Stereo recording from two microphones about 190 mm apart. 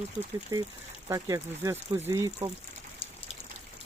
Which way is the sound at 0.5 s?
15° right (ahead or behind).